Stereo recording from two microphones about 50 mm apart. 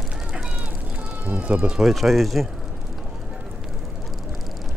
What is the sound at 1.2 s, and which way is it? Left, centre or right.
Speech, right.